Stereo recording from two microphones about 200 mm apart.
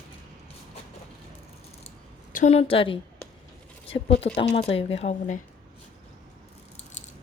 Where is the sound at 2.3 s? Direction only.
35° left (ahead or behind).